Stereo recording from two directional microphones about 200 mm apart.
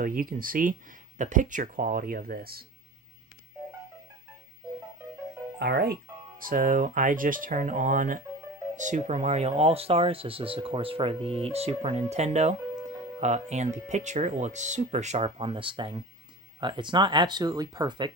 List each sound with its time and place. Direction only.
0.0 s speech: 45° right (ahead or behind)
5.5 s speech: 55° right (ahead or behind)
6.4 s speech: 40° right (ahead or behind); by 18.1 s 20° right (ahead or behind)